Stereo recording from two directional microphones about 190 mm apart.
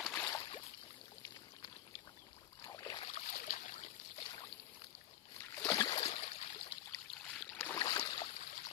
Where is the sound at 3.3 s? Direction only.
55° left (ahead or behind).